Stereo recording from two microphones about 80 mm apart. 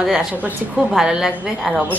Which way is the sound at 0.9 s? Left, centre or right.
Centre.